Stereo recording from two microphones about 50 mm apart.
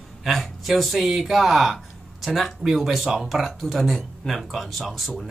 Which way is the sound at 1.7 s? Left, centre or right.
Centre.